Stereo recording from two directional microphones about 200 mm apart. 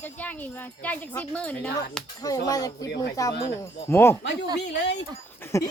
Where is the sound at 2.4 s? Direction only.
20° left (ahead or behind).